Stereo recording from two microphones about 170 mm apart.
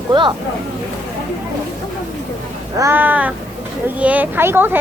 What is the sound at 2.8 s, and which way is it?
Speech, 10° right (ahead or behind).